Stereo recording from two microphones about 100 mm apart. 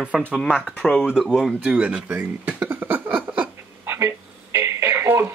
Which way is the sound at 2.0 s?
15° right (ahead or behind).